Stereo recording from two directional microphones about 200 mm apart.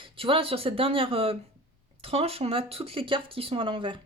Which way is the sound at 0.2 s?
25° right (ahead or behind).